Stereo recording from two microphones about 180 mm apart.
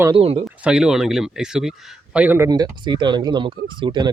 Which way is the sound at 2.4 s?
20° right (ahead or behind).